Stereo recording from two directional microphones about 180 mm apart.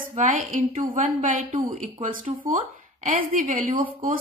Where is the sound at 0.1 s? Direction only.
45° right (ahead or behind).